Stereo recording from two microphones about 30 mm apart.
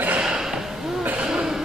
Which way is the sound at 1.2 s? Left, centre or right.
Right.